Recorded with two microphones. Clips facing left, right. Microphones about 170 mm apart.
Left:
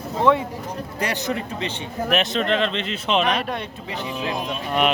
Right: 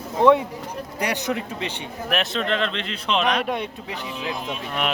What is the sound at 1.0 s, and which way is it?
Speech, 10° right (ahead or behind).